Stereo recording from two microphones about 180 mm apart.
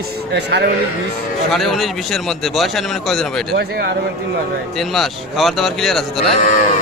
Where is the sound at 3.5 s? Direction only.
60° right (ahead or behind).